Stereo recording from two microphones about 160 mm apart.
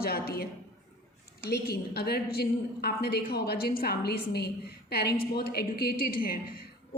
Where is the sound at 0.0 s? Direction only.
75° left (ahead or behind).